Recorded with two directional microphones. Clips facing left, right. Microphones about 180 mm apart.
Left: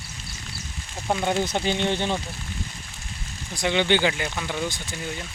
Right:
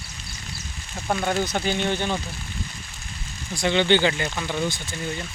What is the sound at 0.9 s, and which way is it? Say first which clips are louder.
Speech: even; 15° left (ahead or behind).